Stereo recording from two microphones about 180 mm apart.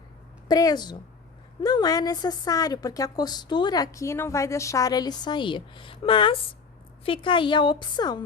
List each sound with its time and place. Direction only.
0.4 s a woman's voice: 20° left (ahead or behind)